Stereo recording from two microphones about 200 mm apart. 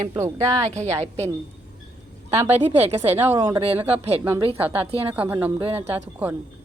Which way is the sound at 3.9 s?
30° right (ahead or behind).